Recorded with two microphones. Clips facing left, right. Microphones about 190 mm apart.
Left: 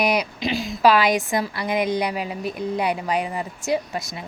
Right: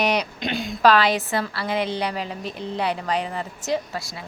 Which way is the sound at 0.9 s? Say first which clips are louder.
Left 1 dB; 10° left (ahead or behind).